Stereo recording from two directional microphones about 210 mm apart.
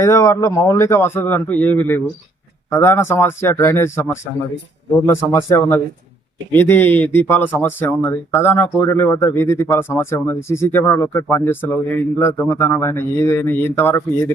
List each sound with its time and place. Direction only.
0.0 s speech: 15° left (ahead or behind)